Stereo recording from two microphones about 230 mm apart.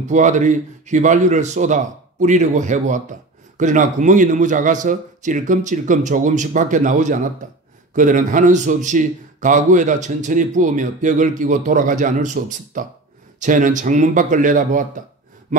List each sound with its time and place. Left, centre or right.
0.1 s speech: right